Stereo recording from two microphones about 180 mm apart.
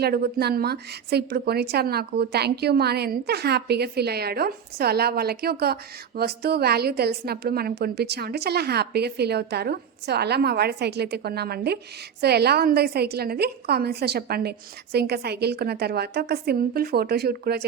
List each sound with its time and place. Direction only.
0.0 s a woman's voice: 60° right (ahead or behind)